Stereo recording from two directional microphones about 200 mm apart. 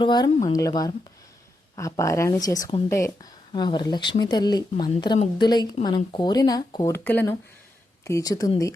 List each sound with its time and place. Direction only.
0.0 s speech: 20° left (ahead or behind)